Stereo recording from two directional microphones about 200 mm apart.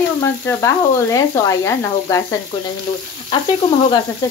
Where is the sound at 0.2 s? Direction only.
15° left (ahead or behind).